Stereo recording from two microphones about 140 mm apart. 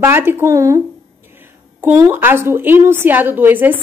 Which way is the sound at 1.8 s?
15° right (ahead or behind).